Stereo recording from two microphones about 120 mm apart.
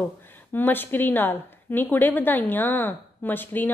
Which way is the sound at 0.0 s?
15° left (ahead or behind).